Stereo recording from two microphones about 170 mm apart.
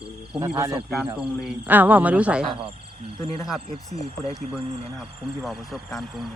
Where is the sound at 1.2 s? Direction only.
5° right (ahead or behind).